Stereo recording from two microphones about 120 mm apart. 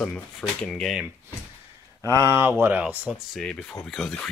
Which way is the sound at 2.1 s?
20° right (ahead or behind).